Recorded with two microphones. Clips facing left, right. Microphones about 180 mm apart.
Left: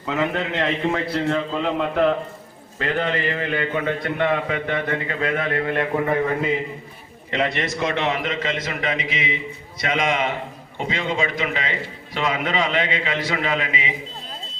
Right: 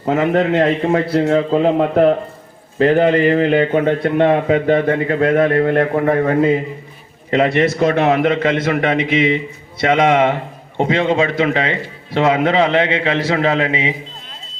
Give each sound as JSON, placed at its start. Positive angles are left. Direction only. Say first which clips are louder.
{"t": 0.0, "sound": "a man's voice", "louder": "right 8 dB", "side_deg": -45}
{"t": 3.8, "sound": "a man's voice", "louder": "right 8 dB", "side_deg": -50}